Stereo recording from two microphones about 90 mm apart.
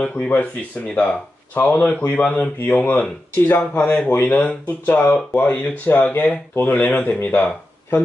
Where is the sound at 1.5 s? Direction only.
20° left (ahead or behind).